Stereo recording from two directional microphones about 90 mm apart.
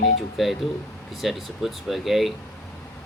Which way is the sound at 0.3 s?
Centre (ahead or behind).